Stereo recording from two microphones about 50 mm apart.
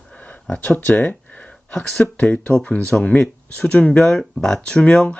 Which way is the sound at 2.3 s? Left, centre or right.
Left.